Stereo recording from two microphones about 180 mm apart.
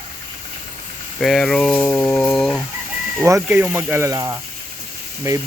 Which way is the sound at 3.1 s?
15° right (ahead or behind).